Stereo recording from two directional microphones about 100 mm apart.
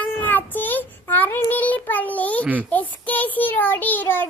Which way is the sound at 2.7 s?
15° left (ahead or behind).